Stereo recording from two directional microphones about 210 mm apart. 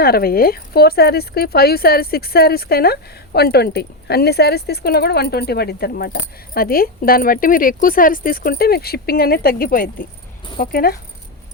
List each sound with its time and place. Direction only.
0.0 s speech: 45° left (ahead or behind)